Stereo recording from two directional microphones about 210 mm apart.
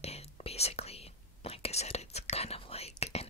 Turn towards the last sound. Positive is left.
turn(degrees=30)  # may be behind; listen again after turning